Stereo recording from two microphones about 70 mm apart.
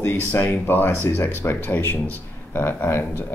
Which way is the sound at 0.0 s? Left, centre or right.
Left.